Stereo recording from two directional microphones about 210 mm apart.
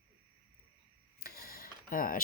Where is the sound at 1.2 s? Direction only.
45° left (ahead or behind).